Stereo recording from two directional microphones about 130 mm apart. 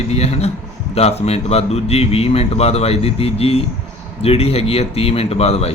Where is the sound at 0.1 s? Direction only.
55° left (ahead or behind).